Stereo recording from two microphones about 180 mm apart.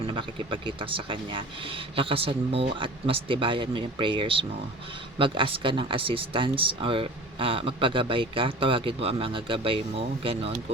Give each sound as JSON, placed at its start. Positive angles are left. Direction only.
{"t": 0.0, "sound": "speech", "side_deg": -30}